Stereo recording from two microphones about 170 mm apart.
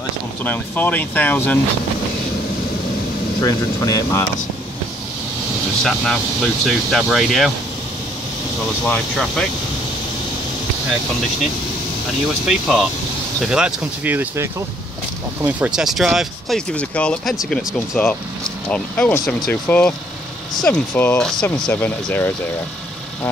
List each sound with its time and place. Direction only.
0.4 s speech: 10° left (ahead or behind)
3.3 s speech: 20° left (ahead or behind)
5.9 s speech: centre (ahead or behind)
8.8 s speech: 5° left (ahead or behind)
12.4 s speech: centre (ahead or behind)